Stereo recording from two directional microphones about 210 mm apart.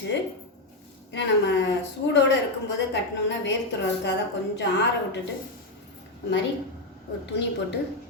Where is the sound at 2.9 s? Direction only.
55° left (ahead or behind).